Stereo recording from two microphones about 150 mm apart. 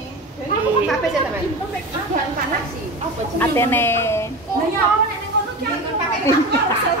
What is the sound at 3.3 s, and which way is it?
Speech, 15° left (ahead or behind).